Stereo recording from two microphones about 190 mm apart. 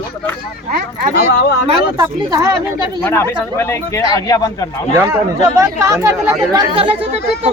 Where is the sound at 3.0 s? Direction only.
10° left (ahead or behind).